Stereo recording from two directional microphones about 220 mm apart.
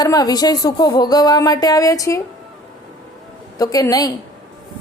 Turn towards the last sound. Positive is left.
turn(degrees=15)  # may be behind; listen again after turning